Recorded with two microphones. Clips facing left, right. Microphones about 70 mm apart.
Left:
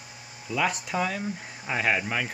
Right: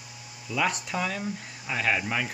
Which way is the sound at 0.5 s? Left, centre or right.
Centre.